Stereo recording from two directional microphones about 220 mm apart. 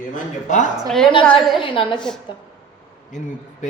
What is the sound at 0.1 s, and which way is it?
Speech, 35° left (ahead or behind).